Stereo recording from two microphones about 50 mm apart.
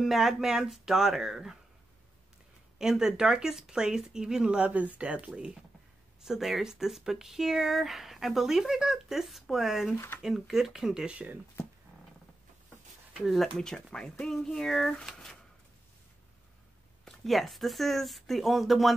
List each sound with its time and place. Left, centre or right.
0.0 s speech: centre
2.8 s speech: centre
4.6 s speech: right
6.2 s speech: centre
11.1 s speech: right
13.1 s speech: centre
13.4 s speech: centre
17.0 s speech: centre